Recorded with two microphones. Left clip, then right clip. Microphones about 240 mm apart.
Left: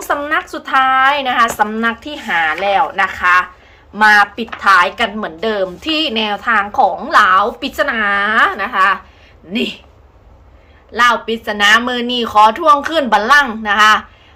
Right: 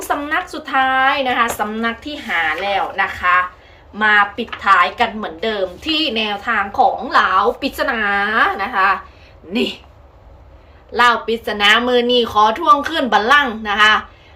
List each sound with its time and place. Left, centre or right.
0.1 s speech: centre
10.9 s speech: centre